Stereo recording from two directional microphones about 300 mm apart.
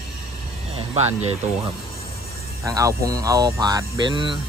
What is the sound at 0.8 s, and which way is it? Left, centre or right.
Speech, right.